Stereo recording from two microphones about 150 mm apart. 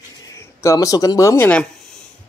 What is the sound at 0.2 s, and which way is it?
Speech, 20° left (ahead or behind).